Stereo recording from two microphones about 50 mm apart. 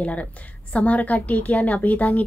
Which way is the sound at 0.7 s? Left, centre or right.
Left.